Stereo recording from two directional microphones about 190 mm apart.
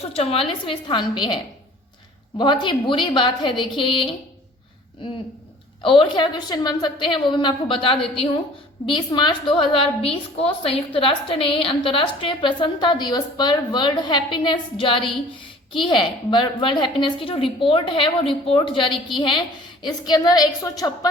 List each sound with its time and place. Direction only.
0.1 s a woman's voice: 30° left (ahead or behind)
2.4 s a woman's voice: 25° left (ahead or behind)
5.8 s a woman's voice: 25° left (ahead or behind)